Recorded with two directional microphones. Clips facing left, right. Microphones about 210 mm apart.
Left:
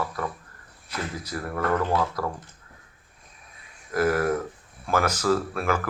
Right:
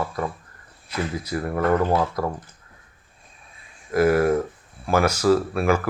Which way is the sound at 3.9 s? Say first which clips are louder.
Right 5 dB; 10° right (ahead or behind).